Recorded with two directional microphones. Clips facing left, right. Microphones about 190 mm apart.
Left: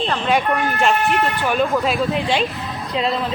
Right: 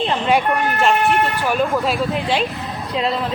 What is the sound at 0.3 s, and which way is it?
Speech, 5° right (ahead or behind).